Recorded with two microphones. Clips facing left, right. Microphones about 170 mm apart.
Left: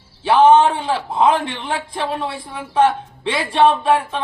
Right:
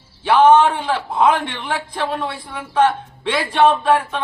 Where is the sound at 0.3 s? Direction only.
25° left (ahead or behind).